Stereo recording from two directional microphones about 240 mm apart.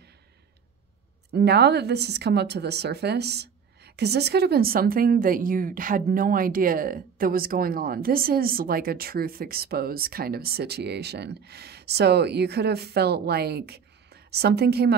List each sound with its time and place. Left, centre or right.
1.3 s a woman's voice: right